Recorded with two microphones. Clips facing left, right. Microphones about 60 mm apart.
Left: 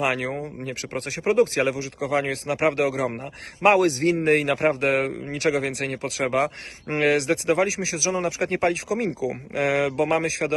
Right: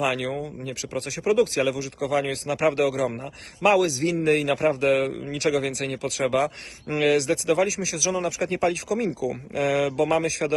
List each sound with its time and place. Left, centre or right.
0.0 s a man's voice: left